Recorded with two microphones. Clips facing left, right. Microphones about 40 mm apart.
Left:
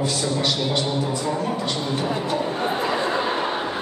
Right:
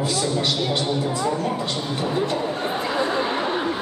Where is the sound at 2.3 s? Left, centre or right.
Centre.